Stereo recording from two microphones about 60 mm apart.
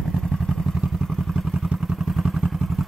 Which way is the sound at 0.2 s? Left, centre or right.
Centre.